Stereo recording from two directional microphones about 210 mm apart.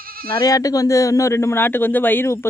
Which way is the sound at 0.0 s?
45° right (ahead or behind).